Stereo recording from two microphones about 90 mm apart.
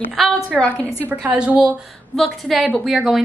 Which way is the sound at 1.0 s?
15° right (ahead or behind).